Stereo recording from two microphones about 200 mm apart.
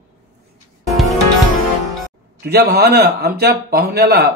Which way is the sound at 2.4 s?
55° right (ahead or behind).